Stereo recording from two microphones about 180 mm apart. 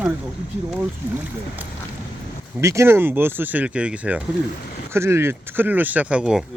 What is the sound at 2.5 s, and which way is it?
Speech, 15° right (ahead or behind).